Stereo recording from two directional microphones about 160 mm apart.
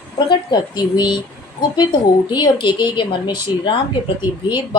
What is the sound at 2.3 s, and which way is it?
A woman's voice, 30° left (ahead or behind).